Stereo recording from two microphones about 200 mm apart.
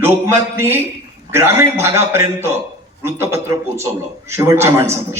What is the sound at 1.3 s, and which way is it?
A man's voice, 10° right (ahead or behind).